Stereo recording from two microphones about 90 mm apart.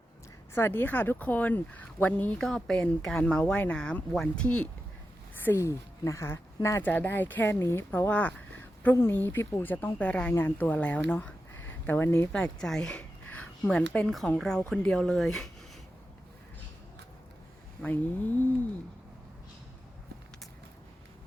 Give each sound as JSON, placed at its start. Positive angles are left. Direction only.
{"t": 0.5, "sound": "speech", "side_deg": 25}
{"t": 2.4, "sound": "speech", "side_deg": 5}
{"t": 3.2, "sound": "speech", "side_deg": 15}
{"t": 7.9, "sound": "speech", "side_deg": 20}
{"t": 11.9, "sound": "speech", "side_deg": 25}
{"t": 12.3, "sound": "speech", "side_deg": 5}
{"t": 17.8, "sound": "speech", "side_deg": 20}